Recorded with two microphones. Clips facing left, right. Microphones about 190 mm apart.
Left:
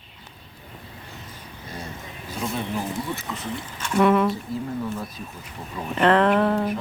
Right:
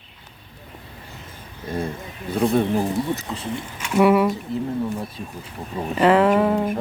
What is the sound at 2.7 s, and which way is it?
Speech, 30° right (ahead or behind).